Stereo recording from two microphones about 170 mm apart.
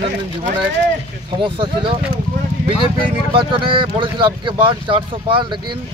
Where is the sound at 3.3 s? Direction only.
30° right (ahead or behind).